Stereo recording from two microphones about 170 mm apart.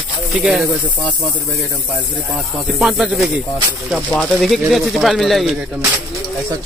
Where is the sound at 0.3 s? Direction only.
Centre (ahead or behind).